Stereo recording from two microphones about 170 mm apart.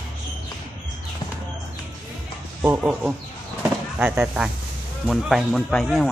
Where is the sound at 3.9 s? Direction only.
5° right (ahead or behind).